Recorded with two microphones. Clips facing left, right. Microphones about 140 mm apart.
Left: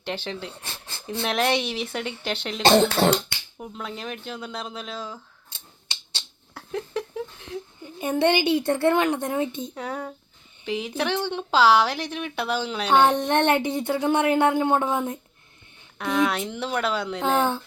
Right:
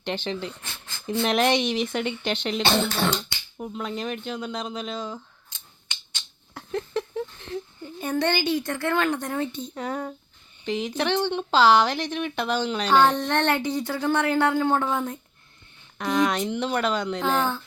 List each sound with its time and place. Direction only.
0.0 s speech: 5° left (ahead or behind)
0.5 s dog: 35° left (ahead or behind)
1.2 s speech: 5° left (ahead or behind)
2.6 s speech: 40° left (ahead or behind)
3.6 s speech: centre (ahead or behind)
5.5 s a sound: 30° left (ahead or behind)
6.5 s a sound: 5° left (ahead or behind)
8.0 s speech: 20° left (ahead or behind)
9.6 s speech: 5° left (ahead or behind)
12.9 s speech: 20° left (ahead or behind)
16.0 s speech: centre (ahead or behind)